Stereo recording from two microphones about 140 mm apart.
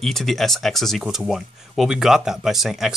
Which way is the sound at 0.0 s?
Centre (ahead or behind).